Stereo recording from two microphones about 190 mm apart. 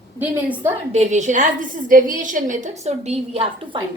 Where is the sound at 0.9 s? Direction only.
35° right (ahead or behind).